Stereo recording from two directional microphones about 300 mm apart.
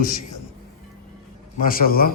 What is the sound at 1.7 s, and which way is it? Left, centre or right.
Speech, left.